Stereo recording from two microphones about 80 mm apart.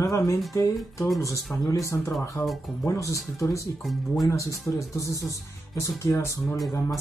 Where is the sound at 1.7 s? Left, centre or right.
Left.